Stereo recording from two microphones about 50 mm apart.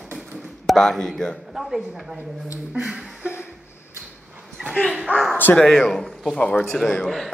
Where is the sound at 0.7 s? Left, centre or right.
Centre.